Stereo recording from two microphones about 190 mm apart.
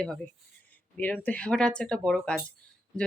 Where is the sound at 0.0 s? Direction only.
5° left (ahead or behind).